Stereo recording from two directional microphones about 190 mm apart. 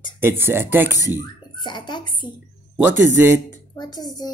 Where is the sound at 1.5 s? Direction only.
25° left (ahead or behind).